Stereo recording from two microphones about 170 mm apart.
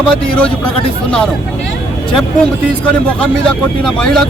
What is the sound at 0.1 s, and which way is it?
Speech, 5° left (ahead or behind).